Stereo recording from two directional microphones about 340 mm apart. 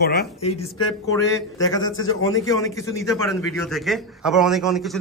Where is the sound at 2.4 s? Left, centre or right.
Centre.